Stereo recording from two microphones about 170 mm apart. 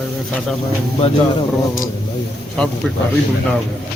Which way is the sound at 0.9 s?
35° left (ahead or behind).